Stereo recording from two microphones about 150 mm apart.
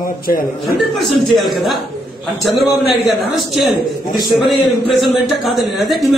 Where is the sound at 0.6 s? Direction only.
Centre (ahead or behind).